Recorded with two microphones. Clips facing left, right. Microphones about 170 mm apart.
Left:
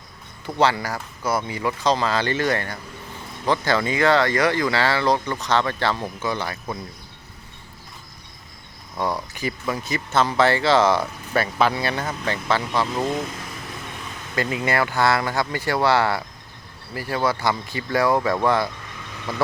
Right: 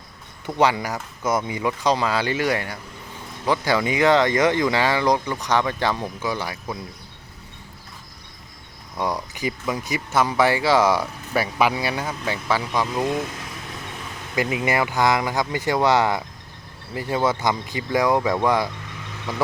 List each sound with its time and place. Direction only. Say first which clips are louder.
0.4 s speech: even; 15° right (ahead or behind)
9.0 s speech: even; 15° right (ahead or behind)
14.3 s speech: right 1 dB; 15° right (ahead or behind)